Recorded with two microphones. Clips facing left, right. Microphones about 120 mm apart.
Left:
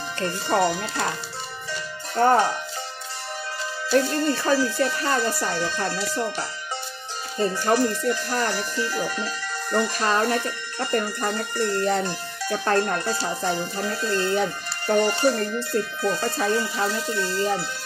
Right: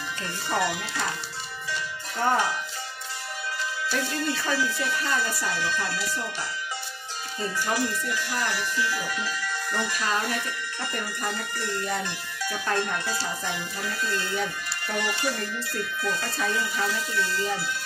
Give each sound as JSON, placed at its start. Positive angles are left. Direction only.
{"t": 0.2, "sound": "speech", "side_deg": 40}
{"t": 1.7, "sound": "music", "side_deg": 40}
{"t": 3.9, "sound": "speech", "side_deg": 40}
{"t": 7.4, "sound": "speech", "side_deg": 40}